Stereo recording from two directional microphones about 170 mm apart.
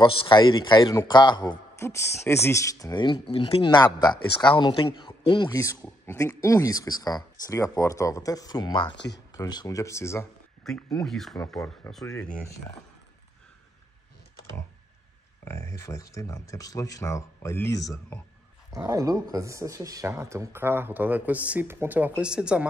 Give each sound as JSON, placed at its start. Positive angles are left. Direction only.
{"t": 0.0, "sound": "speech", "side_deg": 30}
{"t": 8.9, "sound": "speech", "side_deg": 90}
{"t": 9.3, "sound": "speech", "side_deg": 25}
{"t": 10.6, "sound": "speech", "side_deg": 5}
{"t": 11.9, "sound": "speech", "side_deg": 15}
{"t": 12.2, "sound": "speech", "side_deg": 5}
{"t": 15.4, "sound": "speech", "side_deg": 15}
{"t": 18.9, "sound": "speech", "side_deg": -20}